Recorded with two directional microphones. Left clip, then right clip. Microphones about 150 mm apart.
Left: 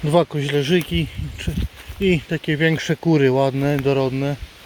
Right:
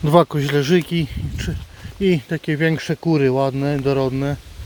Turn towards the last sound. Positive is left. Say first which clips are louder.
# even
turn(degrees=-30)  # may be behind; listen again after turning